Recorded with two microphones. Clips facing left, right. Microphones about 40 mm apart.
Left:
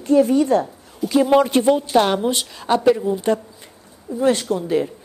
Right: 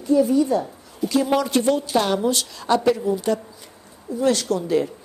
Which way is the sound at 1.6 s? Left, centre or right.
Left.